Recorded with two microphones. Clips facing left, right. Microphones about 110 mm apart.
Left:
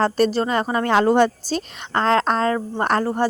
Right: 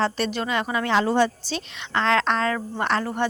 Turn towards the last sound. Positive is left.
turn(degrees=35)  # may be behind; listen again after turning